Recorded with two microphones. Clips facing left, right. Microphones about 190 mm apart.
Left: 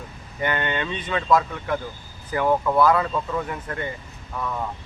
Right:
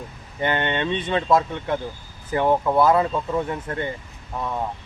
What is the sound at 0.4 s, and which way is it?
Speech, 25° right (ahead or behind).